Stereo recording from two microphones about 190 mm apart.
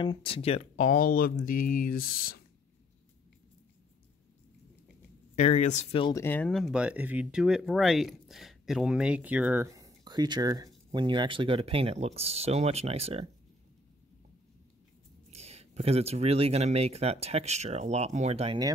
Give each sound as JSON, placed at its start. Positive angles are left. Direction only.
{"t": 0.0, "sound": "speech", "side_deg": 30}
{"t": 5.3, "sound": "speech", "side_deg": 40}
{"t": 6.1, "sound": "speech", "side_deg": 10}
{"t": 15.3, "sound": "speech", "side_deg": -35}